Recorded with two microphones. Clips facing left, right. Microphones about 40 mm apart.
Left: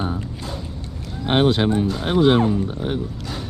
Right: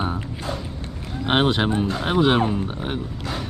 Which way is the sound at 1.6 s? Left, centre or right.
Right.